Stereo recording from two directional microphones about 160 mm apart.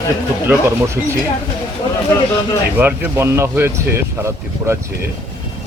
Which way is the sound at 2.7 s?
10° right (ahead or behind).